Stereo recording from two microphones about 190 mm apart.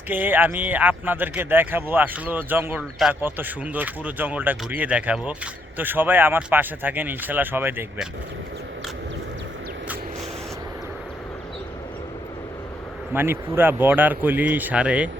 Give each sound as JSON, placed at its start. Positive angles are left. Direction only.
{"t": 0.1, "sound": "speech", "side_deg": -10}
{"t": 13.1, "sound": "speech", "side_deg": -10}